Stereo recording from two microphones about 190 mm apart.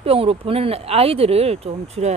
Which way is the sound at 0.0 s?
30° right (ahead or behind).